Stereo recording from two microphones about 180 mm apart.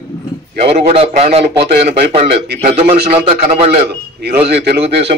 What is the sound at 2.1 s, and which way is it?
A man's voice, 35° right (ahead or behind).